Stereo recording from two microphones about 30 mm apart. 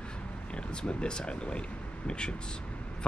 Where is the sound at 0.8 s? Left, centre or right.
Left.